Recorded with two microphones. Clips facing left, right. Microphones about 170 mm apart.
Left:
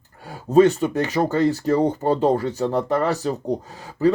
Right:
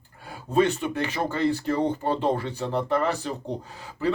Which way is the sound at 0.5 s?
40° left (ahead or behind).